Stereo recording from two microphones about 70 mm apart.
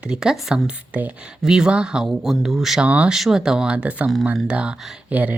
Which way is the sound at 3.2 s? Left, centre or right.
Centre.